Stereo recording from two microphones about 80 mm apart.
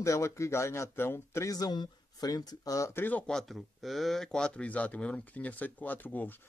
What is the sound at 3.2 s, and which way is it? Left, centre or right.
Speech, centre.